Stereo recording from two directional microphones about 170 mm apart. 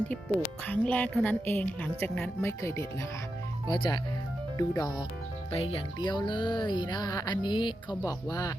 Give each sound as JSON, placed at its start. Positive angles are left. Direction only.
{"t": 0.7, "sound": "a woman's voice", "side_deg": 10}
{"t": 3.7, "sound": "speech", "side_deg": 25}
{"t": 5.5, "sound": "speech", "side_deg": 35}